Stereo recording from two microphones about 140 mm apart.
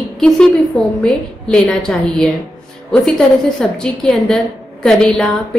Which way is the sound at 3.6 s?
5° left (ahead or behind).